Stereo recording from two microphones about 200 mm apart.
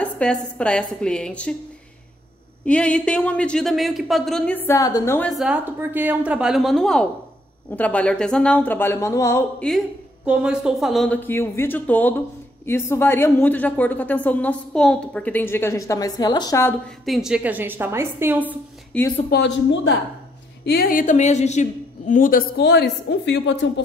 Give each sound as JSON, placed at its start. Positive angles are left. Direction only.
{"t": 0.0, "sound": "speech", "side_deg": 5}
{"t": 2.6, "sound": "speech", "side_deg": 5}
{"t": 5.4, "sound": "a woman's voice", "side_deg": -10}
{"t": 9.7, "sound": "a woman's voice", "side_deg": -5}
{"t": 17.0, "sound": "a woman's voice", "side_deg": 0}
{"t": 18.9, "sound": "a woman's voice", "side_deg": 5}
{"t": 19.3, "sound": "a woman's voice", "side_deg": 60}